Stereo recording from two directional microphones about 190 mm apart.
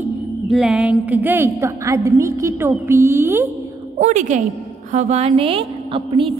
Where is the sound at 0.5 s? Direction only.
5° right (ahead or behind).